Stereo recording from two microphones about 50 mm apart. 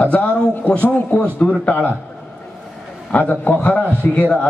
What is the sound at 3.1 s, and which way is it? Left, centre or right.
Speech, left.